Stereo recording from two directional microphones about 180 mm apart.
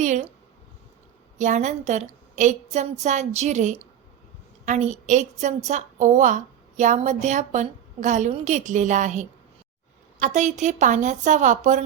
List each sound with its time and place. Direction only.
0.0 s a woman's voice: 40° right (ahead or behind)
1.4 s a woman's voice: 40° right (ahead or behind)